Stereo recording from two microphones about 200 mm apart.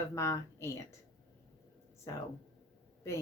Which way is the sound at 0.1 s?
15° left (ahead or behind).